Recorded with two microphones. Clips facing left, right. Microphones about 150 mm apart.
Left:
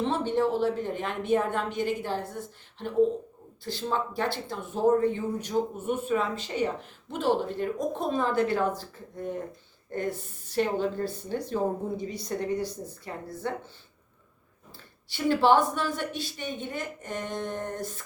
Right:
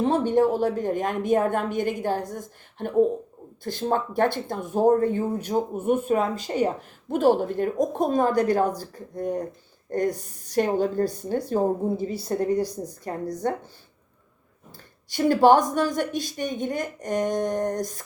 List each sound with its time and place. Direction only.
0.0 s a woman's voice: 45° right (ahead or behind)
12.5 s a woman's voice: 15° right (ahead or behind)
12.9 s speech: 40° right (ahead or behind)
15.1 s a woman's voice: 45° right (ahead or behind)